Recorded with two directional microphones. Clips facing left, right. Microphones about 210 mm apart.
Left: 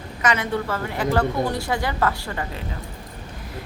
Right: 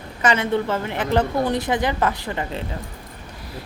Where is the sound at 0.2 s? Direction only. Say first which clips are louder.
Right 3 dB; 30° right (ahead or behind).